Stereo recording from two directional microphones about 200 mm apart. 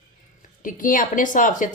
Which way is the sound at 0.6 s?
45° left (ahead or behind).